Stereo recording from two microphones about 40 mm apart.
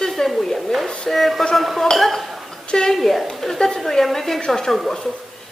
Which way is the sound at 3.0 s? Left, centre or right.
Centre.